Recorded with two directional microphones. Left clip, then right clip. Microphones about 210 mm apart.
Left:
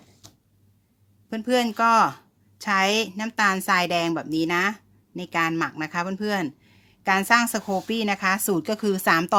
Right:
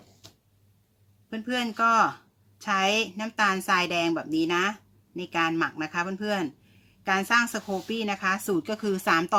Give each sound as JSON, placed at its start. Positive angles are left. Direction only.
{"t": 1.3, "sound": "a woman's voice", "side_deg": 45}